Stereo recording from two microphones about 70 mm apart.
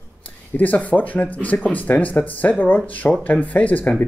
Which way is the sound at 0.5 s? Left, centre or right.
Left.